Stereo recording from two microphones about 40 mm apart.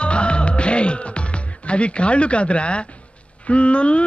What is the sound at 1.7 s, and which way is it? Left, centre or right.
Speech, left.